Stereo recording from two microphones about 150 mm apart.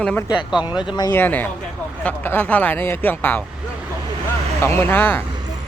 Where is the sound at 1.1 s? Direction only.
10° left (ahead or behind).